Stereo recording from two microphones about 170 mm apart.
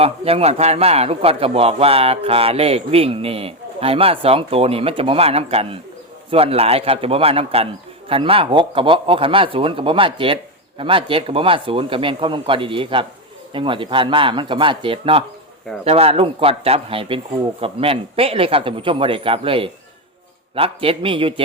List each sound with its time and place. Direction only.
0.0 s a man's voice: 35° right (ahead or behind)